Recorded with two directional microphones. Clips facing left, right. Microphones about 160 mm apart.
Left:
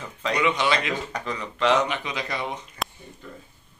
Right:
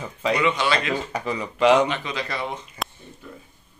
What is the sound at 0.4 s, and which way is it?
Speech, 15° left (ahead or behind).